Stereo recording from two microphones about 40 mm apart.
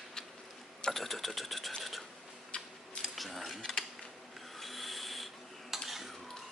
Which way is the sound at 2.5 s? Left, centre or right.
Left.